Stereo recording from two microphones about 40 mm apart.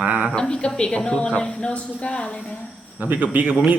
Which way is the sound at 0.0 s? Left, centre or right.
Right.